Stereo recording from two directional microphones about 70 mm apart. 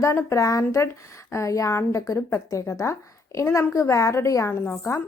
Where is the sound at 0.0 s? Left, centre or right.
Left.